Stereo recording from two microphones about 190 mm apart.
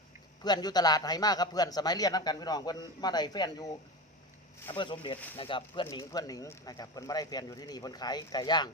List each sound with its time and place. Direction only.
0.4 s speech: 20° left (ahead or behind)